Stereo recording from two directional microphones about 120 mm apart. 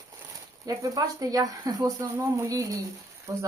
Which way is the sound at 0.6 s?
30° right (ahead or behind).